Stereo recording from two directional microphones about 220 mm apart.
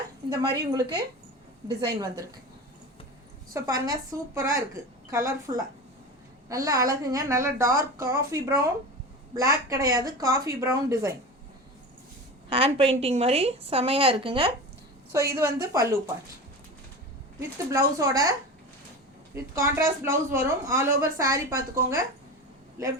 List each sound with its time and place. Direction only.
0.3 s speech: 15° right (ahead or behind)
3.5 s speech: 15° right (ahead or behind)
12.5 s a woman's voice: 25° right (ahead or behind)
17.7 s speech: 15° right (ahead or behind)